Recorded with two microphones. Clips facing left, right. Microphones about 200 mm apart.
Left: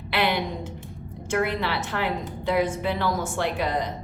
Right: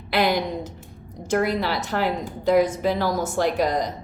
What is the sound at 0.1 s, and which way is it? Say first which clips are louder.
A woman's voice: right 3 dB; 40° right (ahead or behind).